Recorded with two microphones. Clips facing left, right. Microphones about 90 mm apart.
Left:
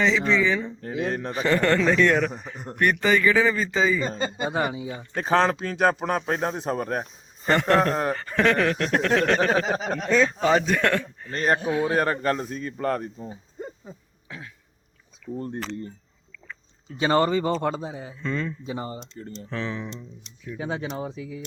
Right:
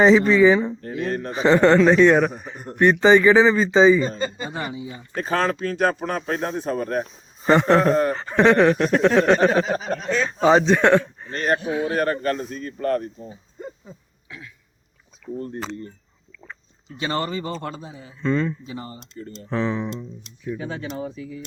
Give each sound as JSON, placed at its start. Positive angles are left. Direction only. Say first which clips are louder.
{"t": 0.0, "sound": "speech", "louder": "right 8 dB", "side_deg": -45}
{"t": 0.9, "sound": "a man's voice", "louder": "right 1 dB", "side_deg": 15}
{"t": 1.3, "sound": "speech", "louder": "right 7 dB", "side_deg": -25}
{"t": 4.1, "sound": "speech", "louder": "left 1 dB", "side_deg": 25}
{"t": 7.4, "sound": "speech", "louder": "right 4 dB", "side_deg": -20}
{"t": 9.6, "sound": "a man's voice", "louder": "right 1 dB", "side_deg": 15}
{"t": 10.4, "sound": "speech", "louder": "right 5 dB", "side_deg": -20}
{"t": 11.4, "sound": "a man's voice", "louder": "even", "side_deg": 30}
{"t": 14.3, "sound": "throat clearing", "louder": "left 1 dB", "side_deg": 40}
{"t": 17.0, "sound": "speech", "louder": "left 5 dB", "side_deg": 25}
{"t": 18.2, "sound": "speech", "louder": "right 7 dB", "side_deg": -20}
{"t": 18.6, "sound": "speech", "louder": "left 3 dB", "side_deg": 25}
{"t": 19.5, "sound": "speech", "louder": "right 8 dB", "side_deg": -25}
{"t": 20.6, "sound": "speech", "louder": "left 1 dB", "side_deg": 20}